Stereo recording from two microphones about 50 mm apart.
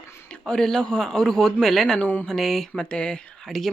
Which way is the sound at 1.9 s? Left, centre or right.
Left.